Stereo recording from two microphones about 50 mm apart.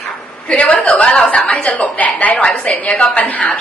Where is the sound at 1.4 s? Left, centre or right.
Left.